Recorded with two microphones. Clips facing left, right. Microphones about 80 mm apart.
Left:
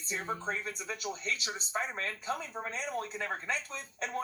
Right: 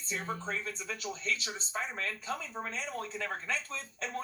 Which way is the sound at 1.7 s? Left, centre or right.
Left.